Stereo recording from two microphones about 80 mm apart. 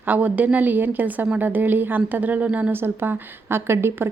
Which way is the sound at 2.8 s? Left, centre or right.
Right.